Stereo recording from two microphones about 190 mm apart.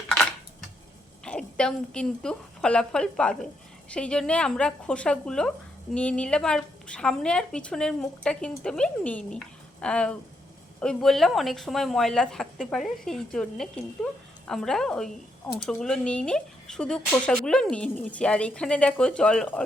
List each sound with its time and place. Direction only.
1.2 s a woman's voice: 5° left (ahead or behind)